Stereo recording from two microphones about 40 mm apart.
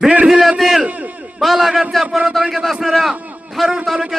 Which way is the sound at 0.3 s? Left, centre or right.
Centre.